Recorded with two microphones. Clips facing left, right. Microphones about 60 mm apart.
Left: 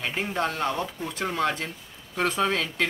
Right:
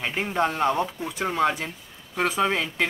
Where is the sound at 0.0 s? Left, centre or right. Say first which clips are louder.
Right 3 dB; centre.